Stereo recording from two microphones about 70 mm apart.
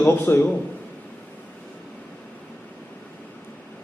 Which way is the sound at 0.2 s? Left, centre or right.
Left.